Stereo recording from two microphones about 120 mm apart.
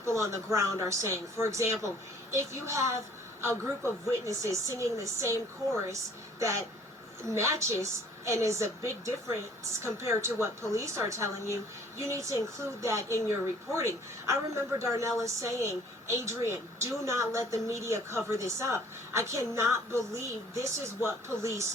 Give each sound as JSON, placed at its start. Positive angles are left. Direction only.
{"t": 0.0, "sound": "a woman's voice", "side_deg": -25}
{"t": 4.3, "sound": "a woman's voice", "side_deg": -25}
{"t": 6.4, "sound": "a woman's voice", "side_deg": -25}